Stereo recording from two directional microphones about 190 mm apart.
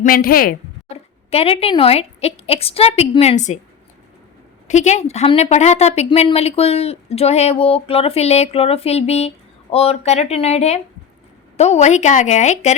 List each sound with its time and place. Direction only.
0.0 s a woman's voice: 50° left (ahead or behind)
1.3 s a woman's voice: 30° left (ahead or behind)
4.7 s a woman's voice: 35° left (ahead or behind)